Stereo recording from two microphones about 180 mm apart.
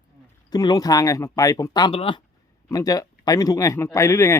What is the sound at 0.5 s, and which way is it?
A man's voice, 20° left (ahead or behind).